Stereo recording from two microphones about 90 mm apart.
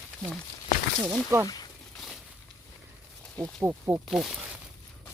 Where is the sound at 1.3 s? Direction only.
30° right (ahead or behind).